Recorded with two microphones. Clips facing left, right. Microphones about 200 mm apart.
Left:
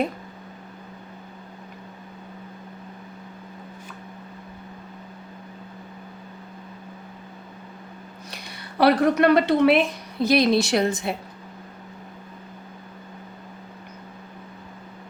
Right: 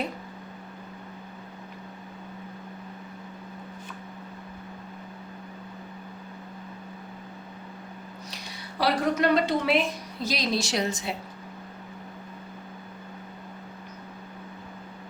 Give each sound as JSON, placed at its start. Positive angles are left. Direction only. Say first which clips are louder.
{"t": 8.8, "sound": "a woman's voice", "louder": "left 7 dB", "side_deg": 60}